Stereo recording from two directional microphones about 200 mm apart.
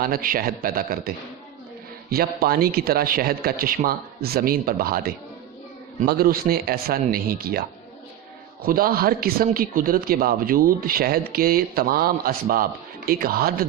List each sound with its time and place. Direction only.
0.0 s a man's voice: 45° right (ahead or behind)
8.6 s a man's voice: 45° right (ahead or behind)